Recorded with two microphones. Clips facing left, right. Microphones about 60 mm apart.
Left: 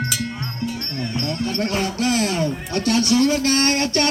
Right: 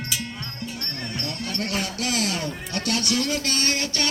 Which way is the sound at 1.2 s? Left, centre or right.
Left.